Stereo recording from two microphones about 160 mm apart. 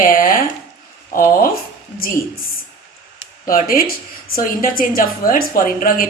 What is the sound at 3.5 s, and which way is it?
A woman's voice, 65° left (ahead or behind).